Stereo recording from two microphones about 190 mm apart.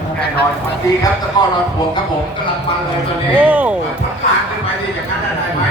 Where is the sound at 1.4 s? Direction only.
25° left (ahead or behind).